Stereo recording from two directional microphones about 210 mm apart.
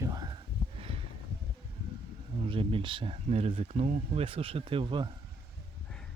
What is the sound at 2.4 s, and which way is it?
Speech, 25° right (ahead or behind).